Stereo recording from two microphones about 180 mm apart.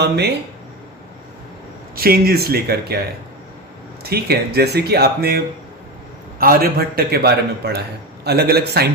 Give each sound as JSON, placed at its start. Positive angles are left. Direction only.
{"t": 0.0, "sound": "a man's voice", "side_deg": -65}
{"t": 2.0, "sound": "a man's voice", "side_deg": -60}
{"t": 6.4, "sound": "a man's voice", "side_deg": -55}